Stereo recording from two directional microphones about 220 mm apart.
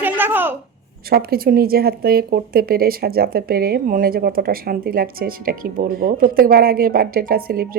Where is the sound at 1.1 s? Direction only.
45° right (ahead or behind).